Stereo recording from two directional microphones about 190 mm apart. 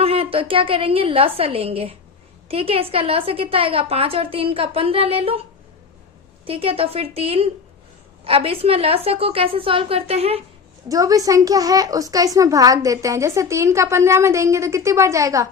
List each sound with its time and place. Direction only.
0.0 s a woman's voice: 30° right (ahead or behind)
6.4 s a woman's voice: 30° right (ahead or behind)
10.8 s a child's voice: 20° right (ahead or behind)